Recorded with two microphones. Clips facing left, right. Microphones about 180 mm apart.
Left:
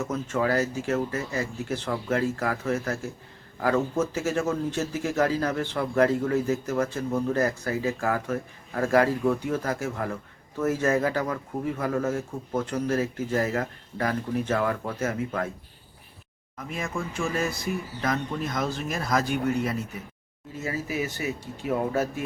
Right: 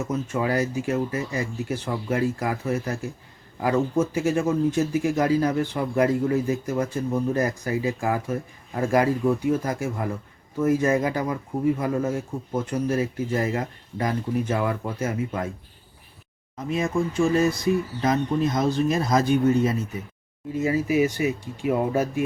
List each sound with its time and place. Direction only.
0.0 s speech: 10° right (ahead or behind)
16.6 s speech: 20° right (ahead or behind)
20.6 s speech: 15° right (ahead or behind)